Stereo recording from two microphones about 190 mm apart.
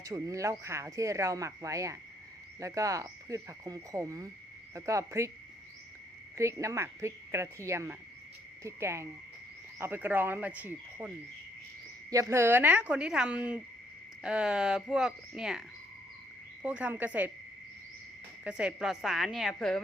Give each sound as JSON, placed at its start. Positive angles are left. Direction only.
{"t": 0.0, "sound": "speech", "side_deg": -15}
{"t": 6.3, "sound": "speech", "side_deg": -15}
{"t": 12.1, "sound": "speech", "side_deg": -15}
{"t": 16.6, "sound": "speech", "side_deg": -5}
{"t": 18.4, "sound": "speech", "side_deg": -5}